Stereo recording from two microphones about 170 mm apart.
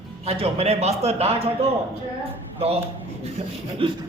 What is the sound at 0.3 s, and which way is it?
A man's voice, 35° right (ahead or behind).